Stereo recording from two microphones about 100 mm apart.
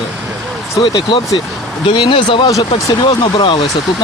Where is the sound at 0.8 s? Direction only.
50° left (ahead or behind).